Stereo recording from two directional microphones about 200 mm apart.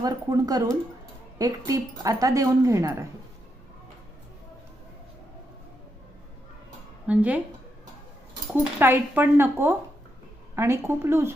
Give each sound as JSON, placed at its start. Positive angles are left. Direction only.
{"t": 0.0, "sound": "speech", "side_deg": -20}
{"t": 7.1, "sound": "speech", "side_deg": -5}
{"t": 8.5, "sound": "speech", "side_deg": -10}